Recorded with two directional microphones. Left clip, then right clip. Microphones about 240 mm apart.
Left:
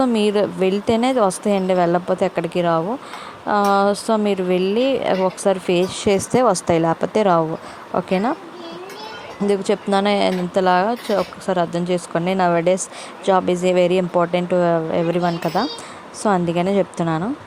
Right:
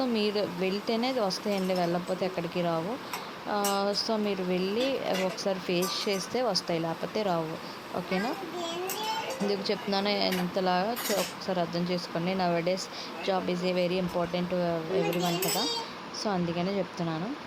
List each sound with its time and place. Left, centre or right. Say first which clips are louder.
0.0 s speech: left 11 dB; left
9.5 s speech: left 14 dB; left